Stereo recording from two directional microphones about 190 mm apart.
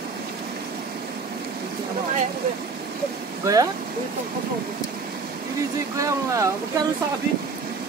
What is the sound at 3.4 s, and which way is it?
Speech, 20° right (ahead or behind).